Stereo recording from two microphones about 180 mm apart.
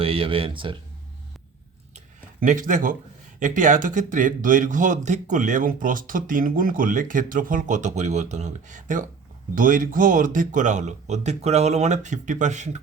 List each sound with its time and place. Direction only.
0.0 s speech: 30° right (ahead or behind)
2.4 s a man's voice: 45° right (ahead or behind)